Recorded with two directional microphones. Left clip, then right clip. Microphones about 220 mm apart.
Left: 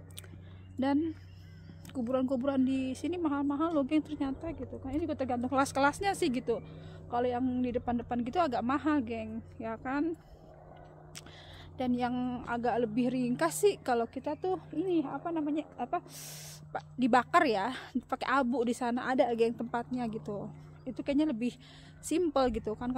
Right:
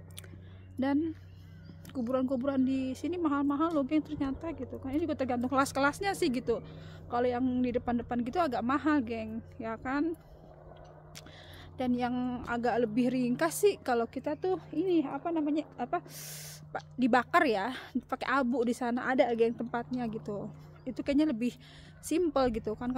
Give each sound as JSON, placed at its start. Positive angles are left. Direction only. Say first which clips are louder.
{"t": 0.7, "sound": "speech", "louder": "even", "side_deg": 0}
{"t": 11.7, "sound": "speech", "louder": "even", "side_deg": 0}